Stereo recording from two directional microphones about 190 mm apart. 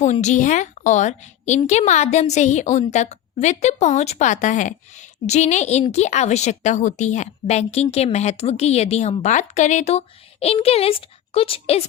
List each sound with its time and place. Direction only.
0.0 s a woman's voice: 40° left (ahead or behind)